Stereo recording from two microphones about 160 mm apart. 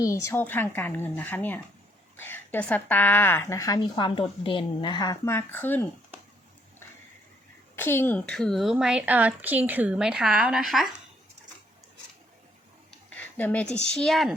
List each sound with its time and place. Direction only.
0.0 s speech: 20° left (ahead or behind)
3.8 s a woman's voice: 30° left (ahead or behind)
5.2 s speech: 15° left (ahead or behind)
7.8 s a woman's voice: 15° left (ahead or behind); by 10.8 s centre (ahead or behind)
12.9 s a sound: 10° left (ahead or behind)
13.8 s a woman's voice: 5° left (ahead or behind)